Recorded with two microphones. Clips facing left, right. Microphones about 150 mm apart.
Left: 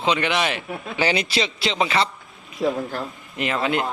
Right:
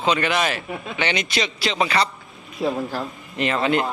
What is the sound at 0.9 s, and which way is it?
A man's voice, 35° left (ahead or behind).